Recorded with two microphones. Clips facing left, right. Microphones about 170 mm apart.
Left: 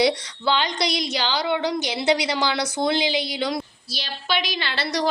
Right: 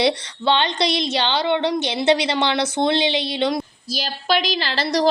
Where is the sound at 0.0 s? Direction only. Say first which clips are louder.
Right 1 dB; 25° right (ahead or behind).